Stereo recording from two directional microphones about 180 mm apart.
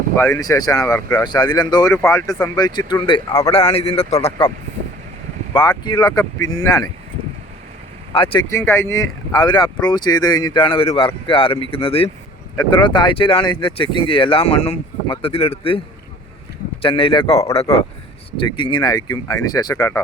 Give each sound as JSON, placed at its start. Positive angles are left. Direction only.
{"t": 0.2, "sound": "speech", "side_deg": 15}
{"t": 5.5, "sound": "speech", "side_deg": 25}
{"t": 8.1, "sound": "speech", "side_deg": 30}
{"t": 8.4, "sound": "speech", "side_deg": 15}
{"t": 16.8, "sound": "speech", "side_deg": 30}